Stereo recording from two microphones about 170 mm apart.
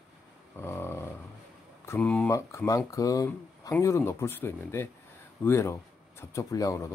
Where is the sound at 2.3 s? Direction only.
15° left (ahead or behind).